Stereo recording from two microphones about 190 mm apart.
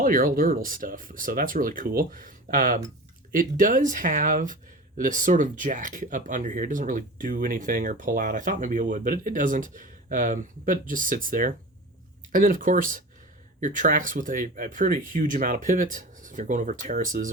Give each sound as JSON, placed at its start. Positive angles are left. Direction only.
{"t": 0.0, "sound": "speech", "side_deg": -45}